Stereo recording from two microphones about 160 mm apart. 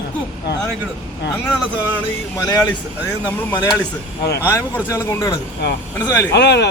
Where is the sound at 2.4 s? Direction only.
20° left (ahead or behind).